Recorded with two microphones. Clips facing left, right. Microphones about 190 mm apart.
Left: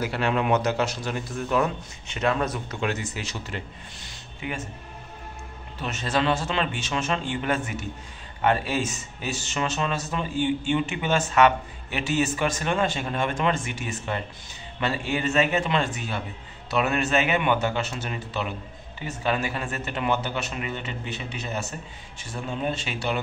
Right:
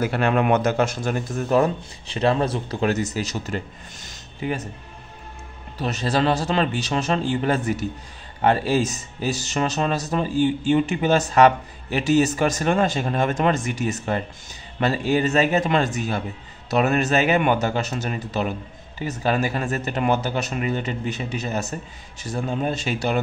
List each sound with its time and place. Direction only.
0.0 s speech: 50° right (ahead or behind)
5.8 s speech: 35° right (ahead or behind)